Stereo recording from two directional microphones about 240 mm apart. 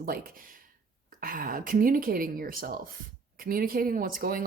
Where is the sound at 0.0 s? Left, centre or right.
Right.